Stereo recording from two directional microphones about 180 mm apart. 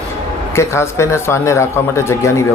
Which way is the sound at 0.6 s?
15° left (ahead or behind).